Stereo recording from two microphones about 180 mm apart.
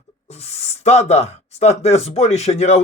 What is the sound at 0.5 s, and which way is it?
Speech, 35° left (ahead or behind).